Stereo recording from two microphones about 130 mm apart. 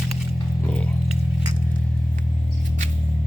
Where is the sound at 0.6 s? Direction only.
10° left (ahead or behind).